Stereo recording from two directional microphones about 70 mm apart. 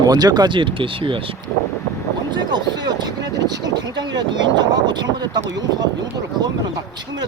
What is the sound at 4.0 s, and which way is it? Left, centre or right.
Speech, right.